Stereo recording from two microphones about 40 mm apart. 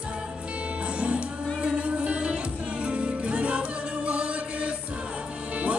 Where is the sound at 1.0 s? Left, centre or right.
Right.